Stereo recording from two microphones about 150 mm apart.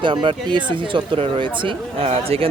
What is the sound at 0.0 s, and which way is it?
Speech, 35° right (ahead or behind).